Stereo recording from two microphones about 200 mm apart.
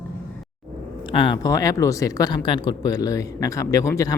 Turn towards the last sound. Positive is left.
turn(degrees=15)  # may be behind; listen again after turning